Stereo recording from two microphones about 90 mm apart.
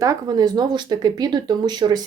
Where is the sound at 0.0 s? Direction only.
40° right (ahead or behind).